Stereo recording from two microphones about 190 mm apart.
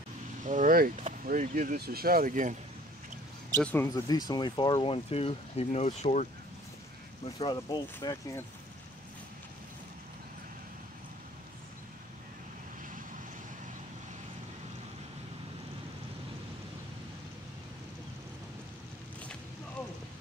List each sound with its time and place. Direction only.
0.4 s speech: 40° right (ahead or behind)
3.6 s speech: 10° left (ahead or behind); by 6.2 s 35° left (ahead or behind)
7.3 s speech: 20° left (ahead or behind)